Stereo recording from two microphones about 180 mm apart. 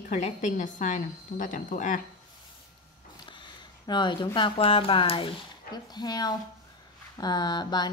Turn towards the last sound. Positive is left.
turn(degrees=25)  # may be behind; listen again after turning